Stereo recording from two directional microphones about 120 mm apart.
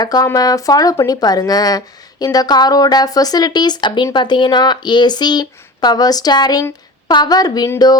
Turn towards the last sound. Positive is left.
turn(degrees=35)  # may be behind; listen again after turning